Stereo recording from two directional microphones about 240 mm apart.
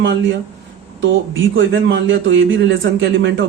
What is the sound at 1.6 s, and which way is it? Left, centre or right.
A man's voice, right.